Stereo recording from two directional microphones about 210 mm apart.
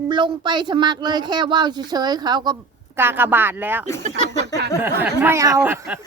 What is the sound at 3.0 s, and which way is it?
Speech, 10° right (ahead or behind).